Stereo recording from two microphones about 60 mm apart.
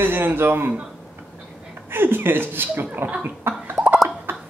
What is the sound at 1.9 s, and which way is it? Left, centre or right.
A man's voice, right.